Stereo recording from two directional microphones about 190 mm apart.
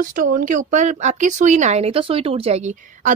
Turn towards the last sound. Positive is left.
turn(degrees=-45)  # may be behind; listen again after turning